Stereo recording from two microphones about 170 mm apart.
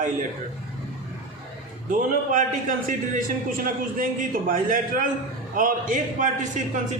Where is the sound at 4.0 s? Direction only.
55° right (ahead or behind).